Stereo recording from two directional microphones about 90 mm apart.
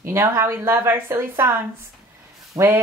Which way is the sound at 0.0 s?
25° right (ahead or behind).